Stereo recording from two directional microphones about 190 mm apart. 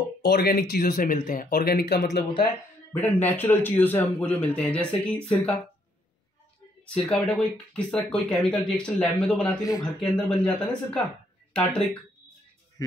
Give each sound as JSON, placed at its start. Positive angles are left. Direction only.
{"t": 0.2, "sound": "speech", "side_deg": 55}
{"t": 2.9, "sound": "a man's voice", "side_deg": 10}
{"t": 6.9, "sound": "speech", "side_deg": 5}